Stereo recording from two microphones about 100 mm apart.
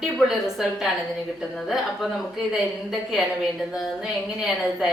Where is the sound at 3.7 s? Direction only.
5° right (ahead or behind).